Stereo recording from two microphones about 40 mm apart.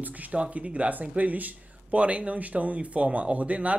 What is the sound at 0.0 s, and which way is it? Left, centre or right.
Speech, right.